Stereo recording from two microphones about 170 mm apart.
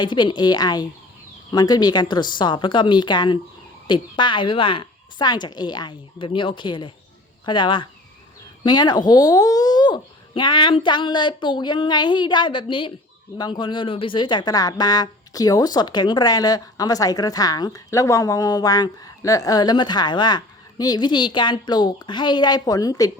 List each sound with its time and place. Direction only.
0.0 s speech: 25° left (ahead or behind)